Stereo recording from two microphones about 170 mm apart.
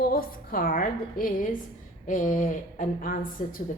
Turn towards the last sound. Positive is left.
turn(degrees=55)  # may be behind; listen again after turning